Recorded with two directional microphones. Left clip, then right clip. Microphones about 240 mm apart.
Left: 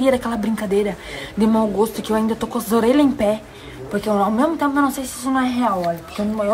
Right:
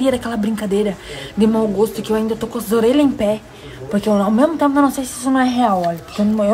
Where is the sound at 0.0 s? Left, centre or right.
Centre.